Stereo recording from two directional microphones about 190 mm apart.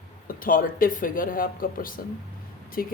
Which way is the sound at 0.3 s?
45° left (ahead or behind).